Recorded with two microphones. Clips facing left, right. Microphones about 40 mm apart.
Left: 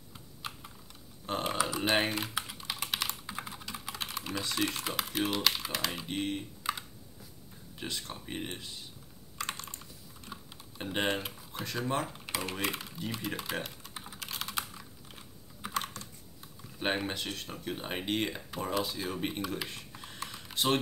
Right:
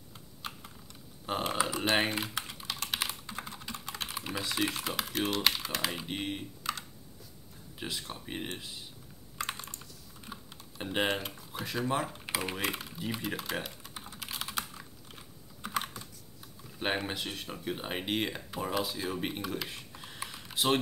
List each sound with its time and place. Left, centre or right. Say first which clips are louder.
0.4 s typing: even; centre
1.2 s speech: even; centre
2.6 s typing: right 2 dB; centre
3.9 s speech: even; centre
6.7 s computer keyboard: left 1 dB; centre
7.8 s speech: even; centre
9.4 s computer keyboard: right 1 dB; centre
10.2 s typing: right 1 dB; centre
15.6 s computer keyboard: right 1 dB; centre
16.7 s speech: even; centre